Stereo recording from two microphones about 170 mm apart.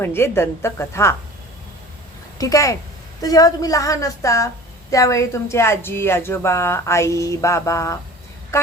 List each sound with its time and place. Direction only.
0.0 s speech: 15° left (ahead or behind)
2.4 s a woman's voice: 20° left (ahead or behind)